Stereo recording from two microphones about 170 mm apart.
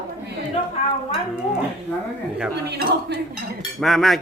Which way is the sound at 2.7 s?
75° right (ahead or behind).